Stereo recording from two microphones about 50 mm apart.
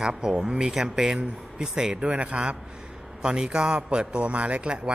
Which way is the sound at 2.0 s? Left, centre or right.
Right.